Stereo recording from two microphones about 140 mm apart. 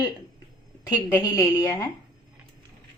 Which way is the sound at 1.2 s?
25° left (ahead or behind).